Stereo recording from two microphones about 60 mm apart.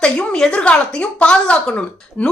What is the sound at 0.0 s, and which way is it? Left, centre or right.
A woman's voice, centre.